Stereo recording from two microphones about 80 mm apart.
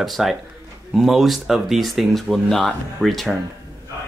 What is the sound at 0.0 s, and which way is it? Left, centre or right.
Speech, centre.